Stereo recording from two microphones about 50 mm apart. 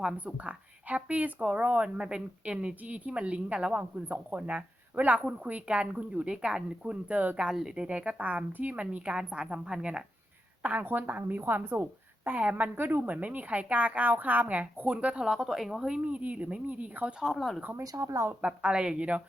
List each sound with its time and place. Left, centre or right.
0.3 s a woman's voice: right
2.0 s a woman's voice: centre
7.5 s speech: centre
7.8 s a woman's voice: right
10.6 s speech: right
12.7 s speech: right
15.1 s speech: centre
16.0 s a woman's voice: right
17.3 s speech: centre
17.7 s speech: right
18.6 s a woman's voice: centre